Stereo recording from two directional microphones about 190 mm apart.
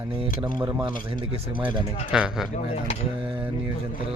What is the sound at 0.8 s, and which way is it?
Speech, 25° right (ahead or behind).